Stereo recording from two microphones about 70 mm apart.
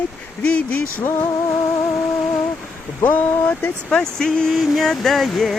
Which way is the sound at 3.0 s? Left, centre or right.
Left.